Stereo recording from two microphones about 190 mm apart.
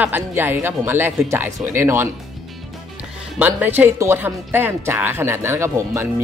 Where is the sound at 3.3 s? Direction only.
10° right (ahead or behind).